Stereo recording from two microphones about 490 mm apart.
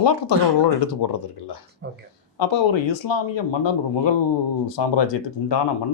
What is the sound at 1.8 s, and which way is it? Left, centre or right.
Speech, centre.